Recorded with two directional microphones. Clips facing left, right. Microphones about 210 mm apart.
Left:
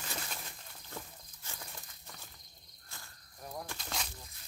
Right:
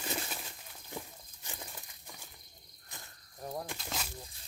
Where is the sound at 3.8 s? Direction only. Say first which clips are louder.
Right 1 dB; 5° right (ahead or behind).